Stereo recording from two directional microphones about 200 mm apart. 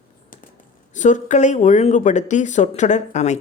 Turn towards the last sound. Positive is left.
turn(degrees=35)  # may be behind; listen again after turning